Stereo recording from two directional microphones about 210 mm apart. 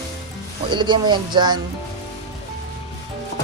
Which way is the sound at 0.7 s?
20° right (ahead or behind).